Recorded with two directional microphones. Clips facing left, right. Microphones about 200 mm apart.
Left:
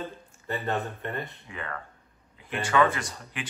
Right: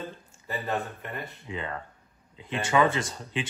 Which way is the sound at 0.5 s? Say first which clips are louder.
Left 1 dB; centre (ahead or behind).